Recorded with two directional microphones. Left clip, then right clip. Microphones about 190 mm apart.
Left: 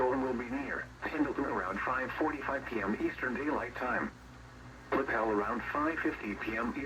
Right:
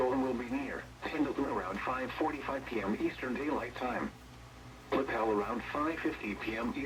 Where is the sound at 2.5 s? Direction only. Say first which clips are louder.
Left 1 dB; 20° right (ahead or behind).